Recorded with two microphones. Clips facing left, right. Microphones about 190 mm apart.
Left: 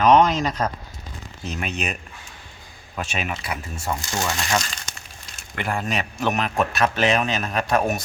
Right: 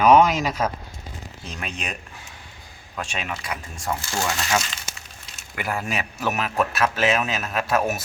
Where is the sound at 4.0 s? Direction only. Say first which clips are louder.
Even; 20° left (ahead or behind).